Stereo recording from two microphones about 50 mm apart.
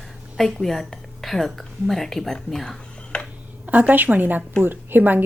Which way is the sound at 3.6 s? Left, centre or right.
Right.